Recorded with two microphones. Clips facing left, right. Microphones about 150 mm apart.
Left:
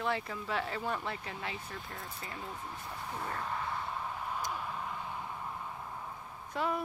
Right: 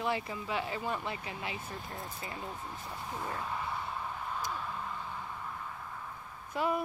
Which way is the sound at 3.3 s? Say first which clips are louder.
Left 1 dB; 5° right (ahead or behind).